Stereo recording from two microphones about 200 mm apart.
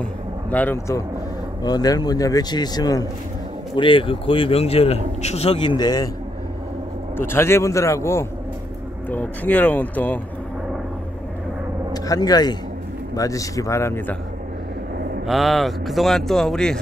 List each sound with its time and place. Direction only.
0.5 s a man's voice: 10° left (ahead or behind)
7.2 s a man's voice: 10° left (ahead or behind)
11.9 s a man's voice: 20° left (ahead or behind)
15.2 s speech: centre (ahead or behind)